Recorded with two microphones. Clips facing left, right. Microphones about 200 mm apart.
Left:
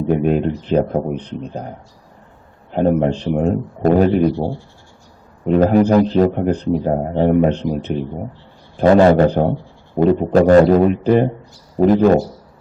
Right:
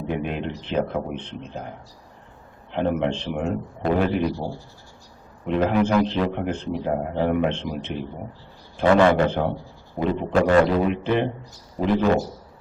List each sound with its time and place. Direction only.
0.1 s speech: 40° left (ahead or behind)
2.7 s speech: 40° left (ahead or behind)